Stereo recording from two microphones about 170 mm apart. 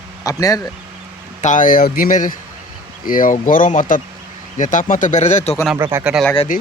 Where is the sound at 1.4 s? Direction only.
50° left (ahead or behind).